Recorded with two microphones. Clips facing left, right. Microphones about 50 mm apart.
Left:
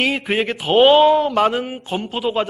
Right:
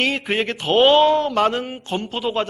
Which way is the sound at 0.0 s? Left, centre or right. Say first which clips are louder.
Left 2 dB; centre.